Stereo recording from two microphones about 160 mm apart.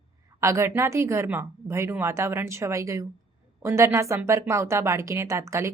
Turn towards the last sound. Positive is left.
turn(degrees=-20)  # may be behind; listen again after turning